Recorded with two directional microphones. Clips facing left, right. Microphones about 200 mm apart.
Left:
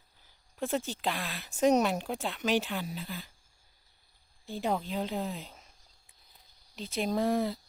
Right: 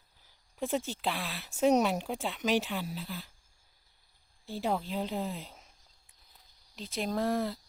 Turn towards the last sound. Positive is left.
turn(degrees=0)  # may be behind; listen again after turning